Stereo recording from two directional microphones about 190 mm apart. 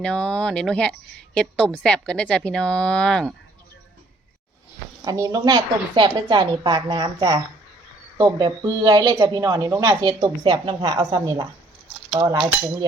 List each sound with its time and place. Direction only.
0.0 s a woman's voice: 5° left (ahead or behind)
5.0 s speech: 20° right (ahead or behind)